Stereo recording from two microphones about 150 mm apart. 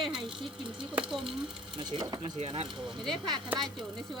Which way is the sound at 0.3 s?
35° right (ahead or behind).